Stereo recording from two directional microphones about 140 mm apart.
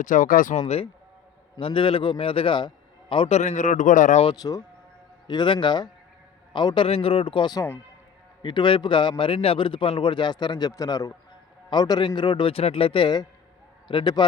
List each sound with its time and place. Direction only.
0.0 s speech: 70° left (ahead or behind)
1.5 s a man's voice: 40° left (ahead or behind); by 4.2 s 65° left (ahead or behind)
4.4 s a man's voice: 25° left (ahead or behind)